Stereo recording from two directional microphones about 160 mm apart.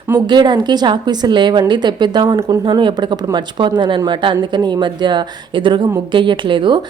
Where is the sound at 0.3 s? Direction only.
25° right (ahead or behind).